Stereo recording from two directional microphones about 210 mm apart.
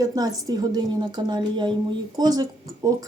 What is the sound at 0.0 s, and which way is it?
Speech, 15° right (ahead or behind).